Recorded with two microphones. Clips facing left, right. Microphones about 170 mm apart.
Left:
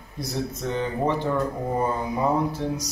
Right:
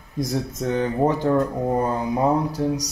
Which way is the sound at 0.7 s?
45° right (ahead or behind).